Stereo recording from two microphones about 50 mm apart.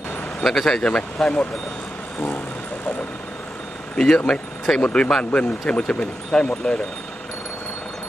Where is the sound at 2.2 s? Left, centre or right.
Left; by 4.0 s centre.